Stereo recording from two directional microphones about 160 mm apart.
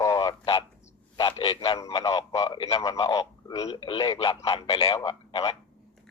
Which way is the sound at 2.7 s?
20° left (ahead or behind).